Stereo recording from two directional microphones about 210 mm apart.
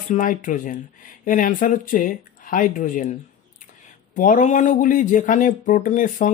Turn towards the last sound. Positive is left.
turn(degrees=40)  # may be behind; listen again after turning